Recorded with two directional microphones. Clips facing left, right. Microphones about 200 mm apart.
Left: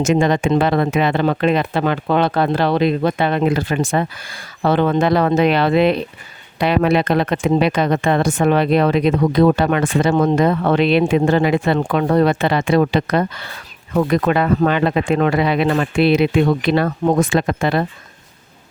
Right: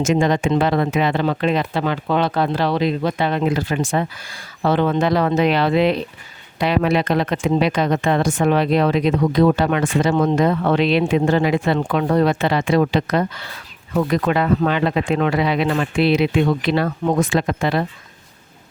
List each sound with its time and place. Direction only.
0.0 s speech: 60° left (ahead or behind)